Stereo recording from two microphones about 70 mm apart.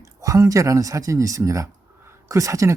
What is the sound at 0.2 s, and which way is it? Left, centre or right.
Speech, right.